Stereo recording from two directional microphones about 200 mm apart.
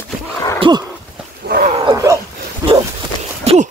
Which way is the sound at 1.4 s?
50° right (ahead or behind).